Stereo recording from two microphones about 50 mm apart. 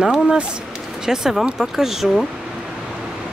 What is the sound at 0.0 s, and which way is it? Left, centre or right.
Speech, centre.